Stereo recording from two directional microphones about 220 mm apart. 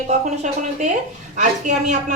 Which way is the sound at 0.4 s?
35° right (ahead or behind).